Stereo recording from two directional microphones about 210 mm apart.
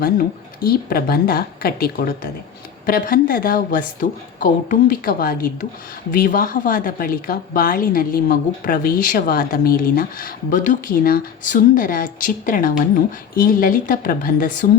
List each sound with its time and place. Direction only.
0.0 s a woman's voice: 45° left (ahead or behind)